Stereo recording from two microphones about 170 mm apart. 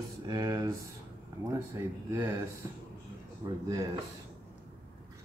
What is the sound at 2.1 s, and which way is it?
Speech, 15° right (ahead or behind).